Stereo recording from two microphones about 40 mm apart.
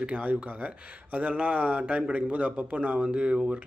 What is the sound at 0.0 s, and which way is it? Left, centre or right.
Speech, right.